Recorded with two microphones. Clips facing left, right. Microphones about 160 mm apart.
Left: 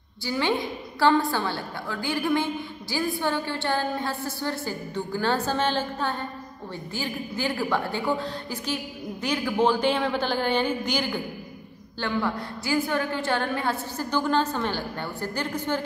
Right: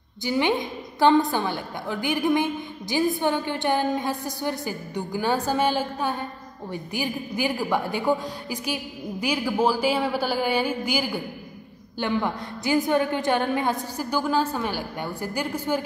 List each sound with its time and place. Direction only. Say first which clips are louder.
0.2 s a woman's voice: right 2 dB; 20° right (ahead or behind)